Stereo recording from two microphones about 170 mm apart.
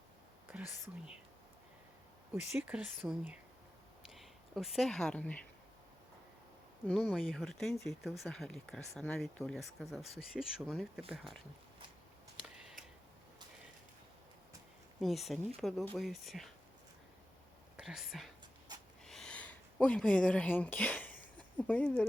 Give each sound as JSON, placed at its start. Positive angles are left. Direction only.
{"t": 2.3, "sound": "speech", "side_deg": -10}
{"t": 6.8, "sound": "speech", "side_deg": 5}
{"t": 15.0, "sound": "speech", "side_deg": 0}
{"t": 17.7, "sound": "speech", "side_deg": 0}
{"t": 19.0, "sound": "a sound", "side_deg": 5}